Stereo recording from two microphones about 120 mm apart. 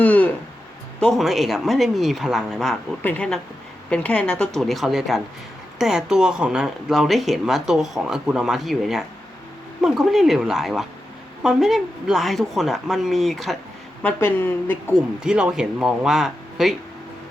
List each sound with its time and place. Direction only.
0.0 s a sound: 15° left (ahead or behind)
0.9 s speech: 5° left (ahead or behind)
3.0 s a woman's voice: 10° left (ahead or behind)
14.0 s a woman's voice: 15° left (ahead or behind)
15.2 s speech: 5° right (ahead or behind)